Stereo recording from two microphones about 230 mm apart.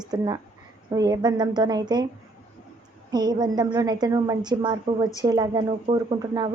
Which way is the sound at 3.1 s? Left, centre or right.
Centre.